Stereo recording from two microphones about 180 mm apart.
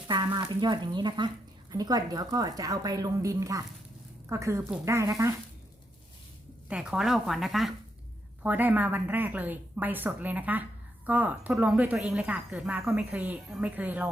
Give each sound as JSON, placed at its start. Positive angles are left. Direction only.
{"t": 0.1, "sound": "a woman's voice", "side_deg": -25}
{"t": 6.7, "sound": "speech", "side_deg": -5}